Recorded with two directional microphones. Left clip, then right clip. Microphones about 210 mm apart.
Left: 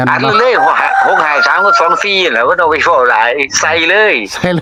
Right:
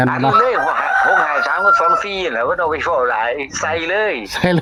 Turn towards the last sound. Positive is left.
turn(degrees=15)  # may be behind; listen again after turning